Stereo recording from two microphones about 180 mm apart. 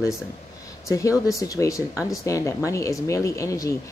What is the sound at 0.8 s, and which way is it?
Speech, 15° left (ahead or behind).